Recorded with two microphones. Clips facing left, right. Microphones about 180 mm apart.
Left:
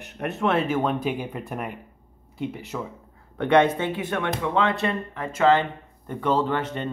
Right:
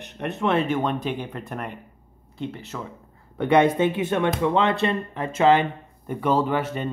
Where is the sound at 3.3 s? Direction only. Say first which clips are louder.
Right 1 dB; 5° right (ahead or behind).